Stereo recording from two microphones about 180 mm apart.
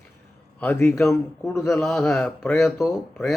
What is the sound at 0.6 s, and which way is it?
Speech, 10° left (ahead or behind).